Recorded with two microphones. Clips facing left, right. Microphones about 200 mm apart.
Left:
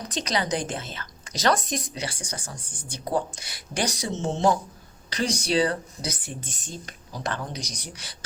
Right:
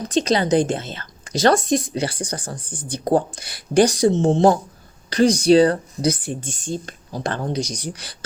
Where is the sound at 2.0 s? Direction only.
55° right (ahead or behind).